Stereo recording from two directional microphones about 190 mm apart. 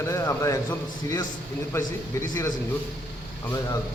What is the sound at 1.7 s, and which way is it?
Speech, 15° left (ahead or behind).